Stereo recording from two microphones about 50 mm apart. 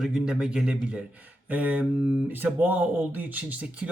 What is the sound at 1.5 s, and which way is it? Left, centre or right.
Speech, right.